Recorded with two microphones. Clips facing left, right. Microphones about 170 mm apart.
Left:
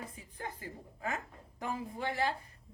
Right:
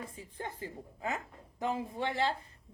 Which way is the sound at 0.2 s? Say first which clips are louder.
Right 3 dB; 25° right (ahead or behind).